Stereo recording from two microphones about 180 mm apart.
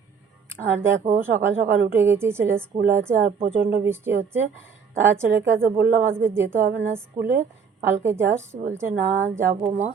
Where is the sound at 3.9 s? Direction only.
15° right (ahead or behind).